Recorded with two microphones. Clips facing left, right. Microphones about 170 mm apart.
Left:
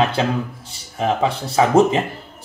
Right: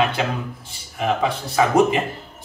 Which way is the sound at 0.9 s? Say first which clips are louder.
Left 2 dB; 30° left (ahead or behind).